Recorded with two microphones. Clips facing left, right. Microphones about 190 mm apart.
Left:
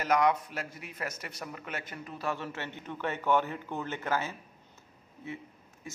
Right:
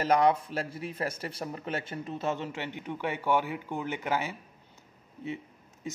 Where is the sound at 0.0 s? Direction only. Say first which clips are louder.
Right 3 dB; 30° right (ahead or behind); by 4.4 s 15° right (ahead or behind).